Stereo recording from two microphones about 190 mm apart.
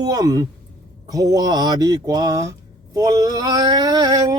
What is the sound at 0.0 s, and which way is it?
Speech, 20° right (ahead or behind).